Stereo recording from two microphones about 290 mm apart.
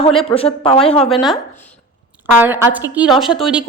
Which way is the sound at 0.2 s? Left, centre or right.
Centre.